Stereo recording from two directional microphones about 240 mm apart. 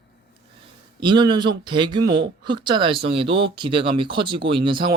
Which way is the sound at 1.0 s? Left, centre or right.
Centre.